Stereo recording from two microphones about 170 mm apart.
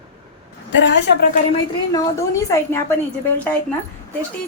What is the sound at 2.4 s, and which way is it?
Speech, 15° left (ahead or behind).